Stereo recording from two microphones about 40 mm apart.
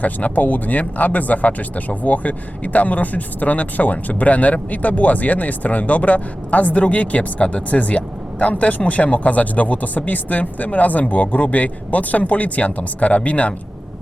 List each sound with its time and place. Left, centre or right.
0.0 s speech: left